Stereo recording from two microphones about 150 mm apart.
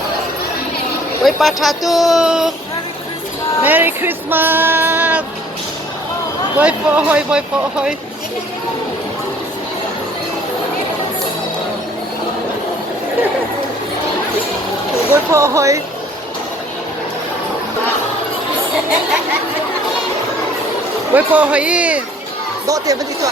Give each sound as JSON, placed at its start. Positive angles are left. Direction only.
{"t": 1.2, "sound": "speech", "side_deg": 0}
{"t": 3.6, "sound": "music", "side_deg": -10}
{"t": 6.6, "sound": "music", "side_deg": -10}
{"t": 15.1, "sound": "speech", "side_deg": -20}
{"t": 21.1, "sound": "music", "side_deg": -10}
{"t": 22.6, "sound": "speech", "side_deg": -25}